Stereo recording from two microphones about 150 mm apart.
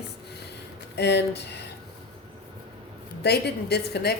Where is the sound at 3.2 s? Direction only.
90° left.